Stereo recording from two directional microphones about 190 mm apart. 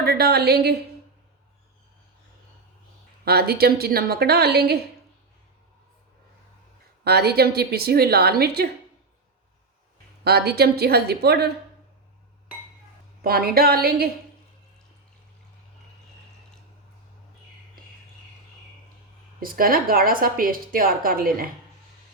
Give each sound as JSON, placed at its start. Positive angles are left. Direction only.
{"t": 0.0, "sound": "a woman's voice", "side_deg": -55}
{"t": 3.2, "sound": "a woman's voice", "side_deg": -55}
{"t": 7.0, "sound": "a woman's voice", "side_deg": -55}
{"t": 10.2, "sound": "a woman's voice", "side_deg": -55}
{"t": 13.2, "sound": "a woman's voice", "side_deg": -55}
{"t": 19.4, "sound": "a woman's voice", "side_deg": -50}